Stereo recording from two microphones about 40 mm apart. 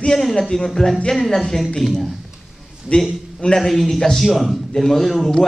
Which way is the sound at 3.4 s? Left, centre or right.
Centre.